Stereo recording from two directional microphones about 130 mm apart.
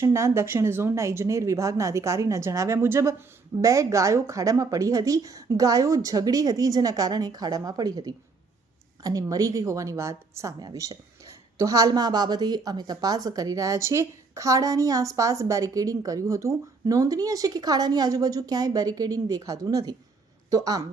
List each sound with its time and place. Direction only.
0.0 s a woman's voice: 20° right (ahead or behind)